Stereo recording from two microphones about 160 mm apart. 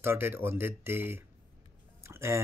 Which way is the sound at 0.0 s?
15° right (ahead or behind).